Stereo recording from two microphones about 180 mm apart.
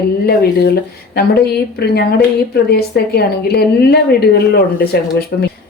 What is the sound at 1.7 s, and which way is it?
Speech, 65° left (ahead or behind).